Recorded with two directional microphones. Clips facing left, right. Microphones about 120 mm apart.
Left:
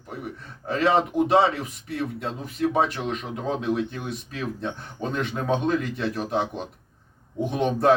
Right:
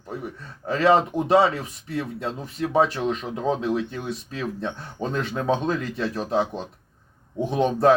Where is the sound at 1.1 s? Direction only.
30° right (ahead or behind).